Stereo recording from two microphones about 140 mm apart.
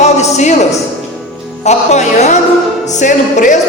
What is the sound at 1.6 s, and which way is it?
Speech, 55° left (ahead or behind).